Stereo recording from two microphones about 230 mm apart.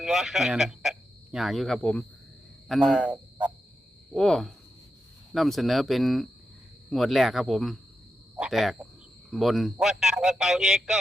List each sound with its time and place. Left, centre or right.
0.0 s a man's voice: centre